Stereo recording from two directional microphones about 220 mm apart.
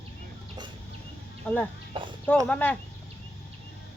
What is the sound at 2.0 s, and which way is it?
Horse, 20° right (ahead or behind).